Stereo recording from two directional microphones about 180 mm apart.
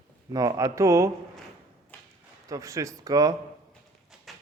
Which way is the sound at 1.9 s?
10° left (ahead or behind).